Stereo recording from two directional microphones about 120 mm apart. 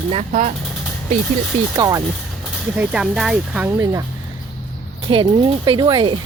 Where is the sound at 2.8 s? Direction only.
5° right (ahead or behind).